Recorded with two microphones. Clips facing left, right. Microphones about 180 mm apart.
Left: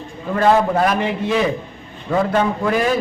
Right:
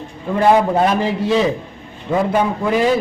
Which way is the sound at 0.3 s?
15° right (ahead or behind).